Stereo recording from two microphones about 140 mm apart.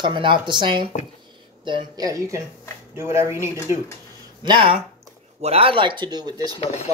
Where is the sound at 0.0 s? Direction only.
35° right (ahead or behind); by 3.5 s 20° right (ahead or behind).